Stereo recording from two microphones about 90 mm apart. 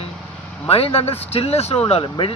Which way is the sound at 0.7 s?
90° left.